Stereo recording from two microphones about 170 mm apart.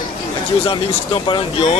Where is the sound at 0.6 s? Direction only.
30° left (ahead or behind).